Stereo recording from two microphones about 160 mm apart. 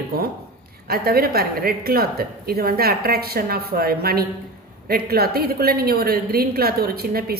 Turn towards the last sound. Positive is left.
turn(degrees=-70)  # may be behind; listen again after turning